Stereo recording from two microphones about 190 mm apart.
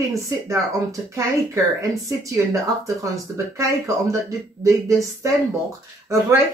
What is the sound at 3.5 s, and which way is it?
Speech, 15° right (ahead or behind).